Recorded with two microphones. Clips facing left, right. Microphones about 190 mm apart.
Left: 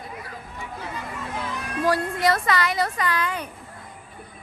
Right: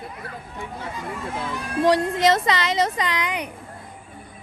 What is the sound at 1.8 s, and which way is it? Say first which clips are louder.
A woman's voice: right 4 dB; 20° right (ahead or behind).